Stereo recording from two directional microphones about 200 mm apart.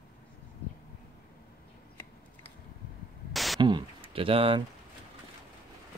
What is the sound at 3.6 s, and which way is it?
Speech, 25° right (ahead or behind).